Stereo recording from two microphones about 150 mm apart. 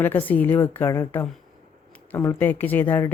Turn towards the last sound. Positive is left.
turn(degrees=15)  # may be behind; listen again after turning